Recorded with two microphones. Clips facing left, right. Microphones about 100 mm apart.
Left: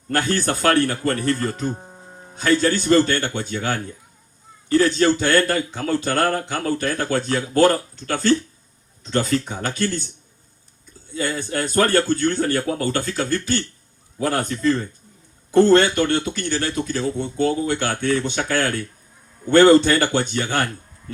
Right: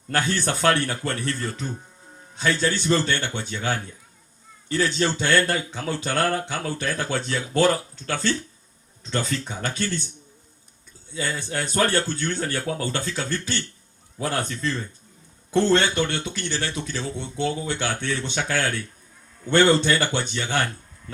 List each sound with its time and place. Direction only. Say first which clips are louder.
0.1 s a man's voice: left 3 dB; 45° left (ahead or behind)
11.1 s a man's voice: left 4 dB; 45° left (ahead or behind)